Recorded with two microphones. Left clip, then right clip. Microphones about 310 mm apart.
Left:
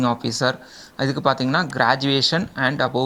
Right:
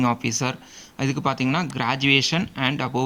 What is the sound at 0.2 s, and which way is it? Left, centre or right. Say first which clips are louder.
Speech: left 4 dB; centre.